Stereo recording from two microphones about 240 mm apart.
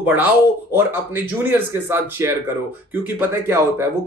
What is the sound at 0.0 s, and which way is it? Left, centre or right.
A man's voice, centre.